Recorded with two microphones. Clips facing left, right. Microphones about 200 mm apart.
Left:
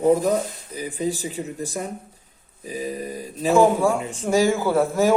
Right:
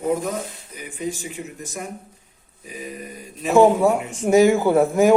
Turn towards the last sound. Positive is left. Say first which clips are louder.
# right 3 dB
turn(degrees=-15)  # may be behind; listen again after turning